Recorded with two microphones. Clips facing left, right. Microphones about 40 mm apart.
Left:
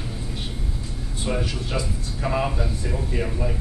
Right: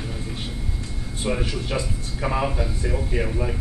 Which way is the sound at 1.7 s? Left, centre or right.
Centre.